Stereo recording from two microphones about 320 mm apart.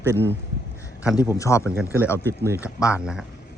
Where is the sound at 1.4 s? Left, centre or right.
Centre.